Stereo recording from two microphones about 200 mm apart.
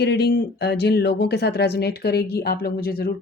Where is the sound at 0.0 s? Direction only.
55° left (ahead or behind).